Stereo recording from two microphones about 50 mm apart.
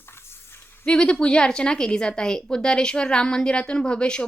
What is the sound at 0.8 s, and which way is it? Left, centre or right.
A woman's voice, centre.